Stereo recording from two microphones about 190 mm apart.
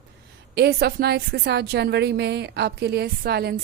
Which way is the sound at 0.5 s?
55° right (ahead or behind).